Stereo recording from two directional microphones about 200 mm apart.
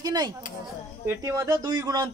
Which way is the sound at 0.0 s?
20° right (ahead or behind).